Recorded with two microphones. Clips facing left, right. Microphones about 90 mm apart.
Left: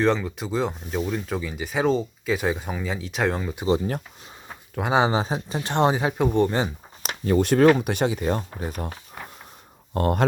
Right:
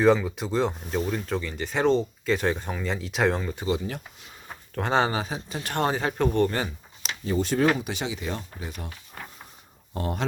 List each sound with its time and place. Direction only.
0.0 s speech: centre (ahead or behind)
3.7 s speech: 40° left (ahead or behind)
4.4 s a sound: 10° left (ahead or behind)
5.1 s speech: 30° left (ahead or behind)
7.0 s speech: 55° left (ahead or behind)
9.9 s speech: 60° left (ahead or behind)